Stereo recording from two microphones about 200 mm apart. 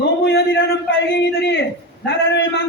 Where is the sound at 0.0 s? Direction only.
55° left (ahead or behind).